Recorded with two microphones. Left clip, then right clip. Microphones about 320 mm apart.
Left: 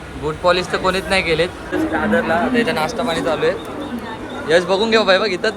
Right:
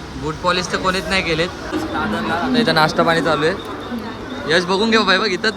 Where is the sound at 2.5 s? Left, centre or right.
Centre.